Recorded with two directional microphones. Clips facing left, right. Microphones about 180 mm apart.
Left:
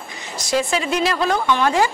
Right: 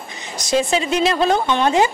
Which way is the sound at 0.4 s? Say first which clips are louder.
Right 2 dB; 20° right (ahead or behind).